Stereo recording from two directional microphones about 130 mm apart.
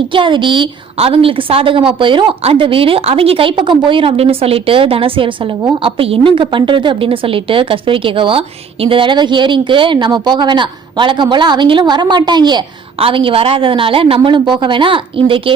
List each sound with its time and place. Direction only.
0.1 s a woman's voice: 40° right (ahead or behind)